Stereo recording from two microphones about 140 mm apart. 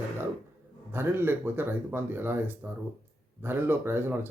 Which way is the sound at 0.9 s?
15° right (ahead or behind).